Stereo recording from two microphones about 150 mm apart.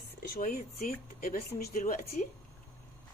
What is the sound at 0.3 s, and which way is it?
Speech, 75° left (ahead or behind).